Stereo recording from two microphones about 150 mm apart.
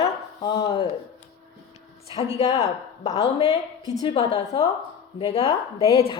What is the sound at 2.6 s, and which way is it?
A woman's voice, 45° left (ahead or behind).